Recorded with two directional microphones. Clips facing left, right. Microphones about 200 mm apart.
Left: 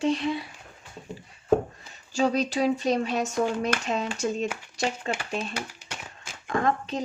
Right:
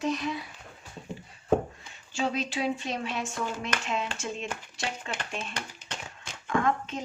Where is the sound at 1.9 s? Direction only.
40° left (ahead or behind).